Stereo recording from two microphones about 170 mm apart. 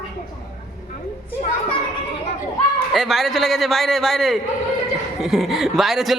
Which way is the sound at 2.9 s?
Centre (ahead or behind).